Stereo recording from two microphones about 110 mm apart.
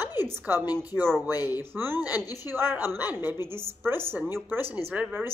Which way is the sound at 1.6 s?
20° right (ahead or behind).